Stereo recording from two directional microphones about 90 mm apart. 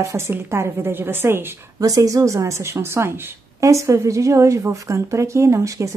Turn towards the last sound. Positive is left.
turn(degrees=-35)  # may be behind; listen again after turning